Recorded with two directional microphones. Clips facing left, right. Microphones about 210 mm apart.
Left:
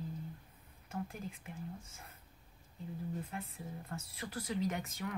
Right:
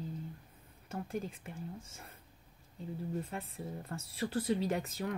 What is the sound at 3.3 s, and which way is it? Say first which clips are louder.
Speech: right 3 dB; 30° right (ahead or behind).